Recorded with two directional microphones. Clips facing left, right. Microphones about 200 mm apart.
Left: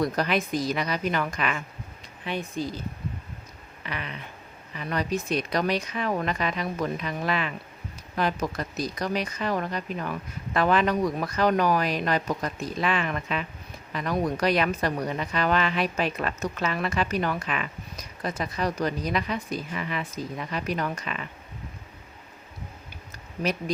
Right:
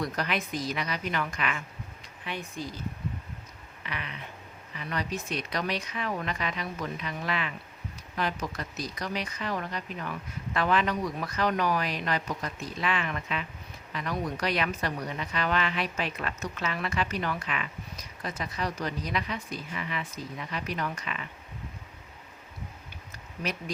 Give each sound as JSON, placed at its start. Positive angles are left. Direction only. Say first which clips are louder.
{"t": 0.0, "sound": "speech", "louder": "left 6 dB", "side_deg": 35}
{"t": 2.2, "sound": "speech", "louder": "left 6 dB", "side_deg": 30}
{"t": 3.8, "sound": "speech", "louder": "left 3 dB", "side_deg": 40}
{"t": 23.4, "sound": "speech", "louder": "left 6 dB", "side_deg": 35}